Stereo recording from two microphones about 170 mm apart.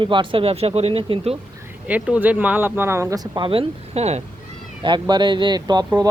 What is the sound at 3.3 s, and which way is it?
Speech, 30° right (ahead or behind).